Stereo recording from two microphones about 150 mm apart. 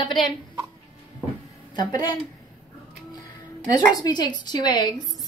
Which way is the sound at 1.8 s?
25° left (ahead or behind).